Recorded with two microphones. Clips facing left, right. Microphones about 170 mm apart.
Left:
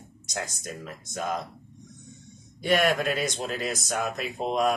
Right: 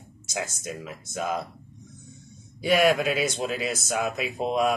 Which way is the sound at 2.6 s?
5° right (ahead or behind).